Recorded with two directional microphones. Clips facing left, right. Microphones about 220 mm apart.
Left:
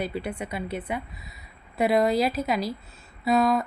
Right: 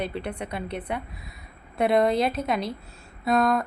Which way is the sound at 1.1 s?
55° right (ahead or behind).